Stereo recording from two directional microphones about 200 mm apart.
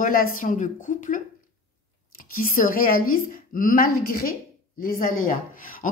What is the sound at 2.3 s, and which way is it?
A woman's voice, 45° left (ahead or behind).